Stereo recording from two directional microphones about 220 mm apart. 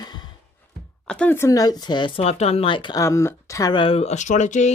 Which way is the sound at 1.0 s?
5° left (ahead or behind).